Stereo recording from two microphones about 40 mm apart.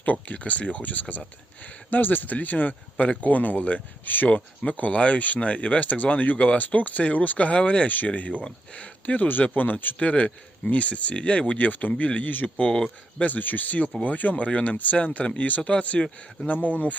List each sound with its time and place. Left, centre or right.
0.0 s speech: left
4.6 s speech: left
7.9 s speech: left
10.0 s speech: left
16.0 s speech: left
16.6 s speech: left